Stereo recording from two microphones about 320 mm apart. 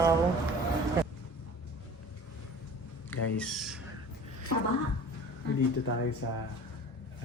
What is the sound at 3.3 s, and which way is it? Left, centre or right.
Speech, centre.